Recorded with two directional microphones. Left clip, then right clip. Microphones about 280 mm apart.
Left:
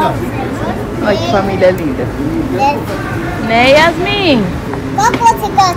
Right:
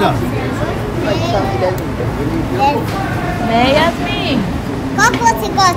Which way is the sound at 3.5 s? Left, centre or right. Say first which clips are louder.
Left 5 dB; right.